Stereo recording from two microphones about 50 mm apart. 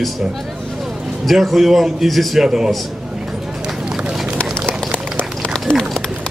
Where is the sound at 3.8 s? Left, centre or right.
Centre.